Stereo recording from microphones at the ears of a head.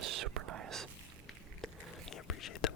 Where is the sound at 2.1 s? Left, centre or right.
Left.